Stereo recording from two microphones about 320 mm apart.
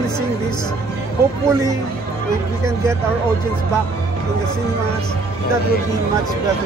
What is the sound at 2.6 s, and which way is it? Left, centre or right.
Speech, centre.